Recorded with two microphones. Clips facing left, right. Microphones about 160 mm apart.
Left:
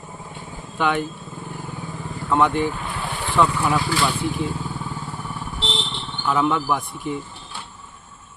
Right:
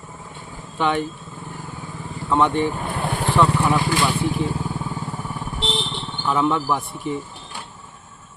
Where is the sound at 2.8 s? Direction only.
45° right (ahead or behind).